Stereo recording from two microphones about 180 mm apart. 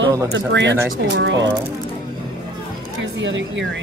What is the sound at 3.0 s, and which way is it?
Speech, 90° right.